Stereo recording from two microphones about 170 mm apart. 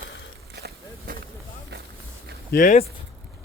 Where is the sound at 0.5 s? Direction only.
65° right (ahead or behind).